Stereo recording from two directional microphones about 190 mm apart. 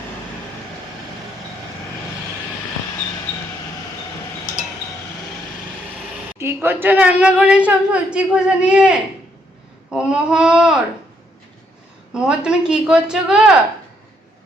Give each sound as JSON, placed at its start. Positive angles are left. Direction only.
{"t": 6.4, "sound": "a woman's voice", "side_deg": -15}
{"t": 12.1, "sound": "a woman's voice", "side_deg": -5}